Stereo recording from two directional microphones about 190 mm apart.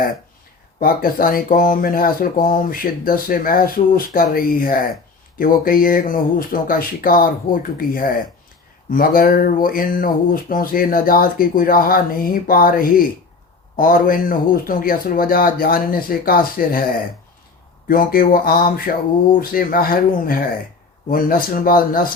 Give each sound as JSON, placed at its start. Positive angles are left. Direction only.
{"t": 0.8, "sound": "speech", "side_deg": 50}
{"t": 17.8, "sound": "speech", "side_deg": 50}